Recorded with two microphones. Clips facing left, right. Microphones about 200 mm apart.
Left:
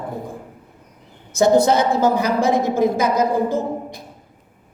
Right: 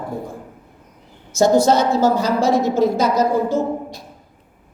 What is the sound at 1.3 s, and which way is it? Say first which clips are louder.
A woman's voice: even; 60° left (ahead or behind).